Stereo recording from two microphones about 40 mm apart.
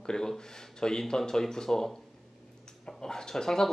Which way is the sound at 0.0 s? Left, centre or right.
Centre.